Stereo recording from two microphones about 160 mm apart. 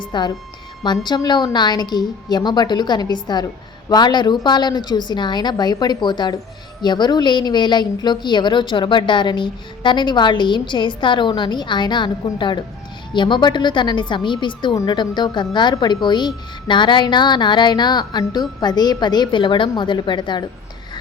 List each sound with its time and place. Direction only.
0.1 s a woman's voice: 25° left (ahead or behind)